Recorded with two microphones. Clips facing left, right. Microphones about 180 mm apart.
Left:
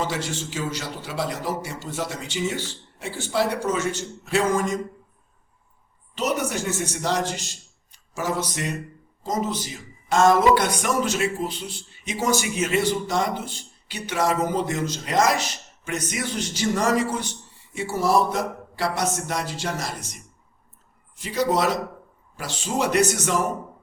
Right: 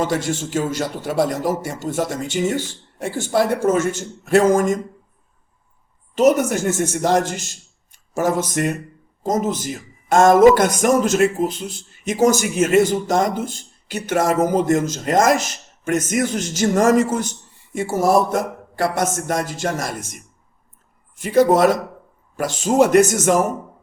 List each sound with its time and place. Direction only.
0.0 s speech: 50° right (ahead or behind)
6.1 s a man's voice: 45° right (ahead or behind)